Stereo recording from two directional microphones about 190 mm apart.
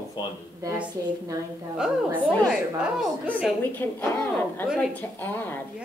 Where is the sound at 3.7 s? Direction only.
10° left (ahead or behind).